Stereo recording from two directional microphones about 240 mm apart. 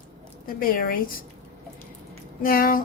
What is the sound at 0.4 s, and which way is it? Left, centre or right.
Speech, left.